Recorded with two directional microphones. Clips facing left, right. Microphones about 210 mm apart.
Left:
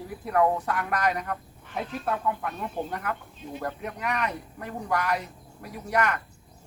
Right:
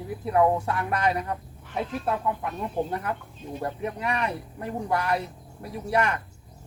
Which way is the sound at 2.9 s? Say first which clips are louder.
Right 2 dB; 30° right (ahead or behind).